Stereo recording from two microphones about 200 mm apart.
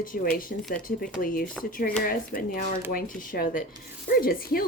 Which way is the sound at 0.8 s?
45° left (ahead or behind).